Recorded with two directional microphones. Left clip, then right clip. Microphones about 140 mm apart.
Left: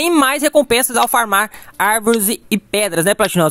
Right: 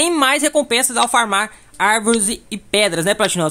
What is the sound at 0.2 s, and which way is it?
Speech, 40° left (ahead or behind).